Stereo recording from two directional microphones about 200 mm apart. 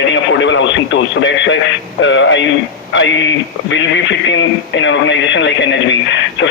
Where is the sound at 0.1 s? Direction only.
65° left (ahead or behind).